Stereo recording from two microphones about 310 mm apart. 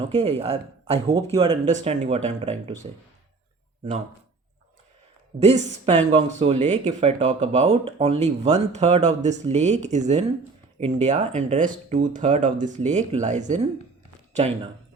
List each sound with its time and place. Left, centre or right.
0.1 s speech: centre
5.4 s speech: centre